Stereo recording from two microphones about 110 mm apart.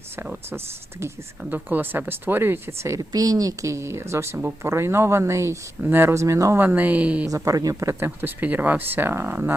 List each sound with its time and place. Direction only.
0.5 s speech: 25° right (ahead or behind)
7.3 s speech: 30° right (ahead or behind)